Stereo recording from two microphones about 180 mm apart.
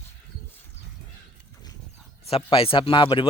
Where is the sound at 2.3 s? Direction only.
30° left (ahead or behind).